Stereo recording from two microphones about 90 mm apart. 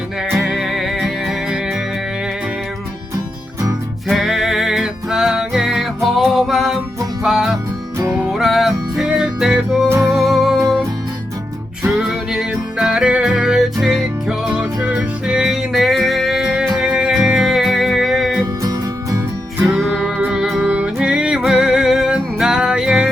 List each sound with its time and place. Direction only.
0.5 s music: 5° right (ahead or behind)
4.1 s music: centre (ahead or behind)
11.9 s music: 5° right (ahead or behind)
18.6 s music: 40° right (ahead or behind)
19.7 s music: centre (ahead or behind)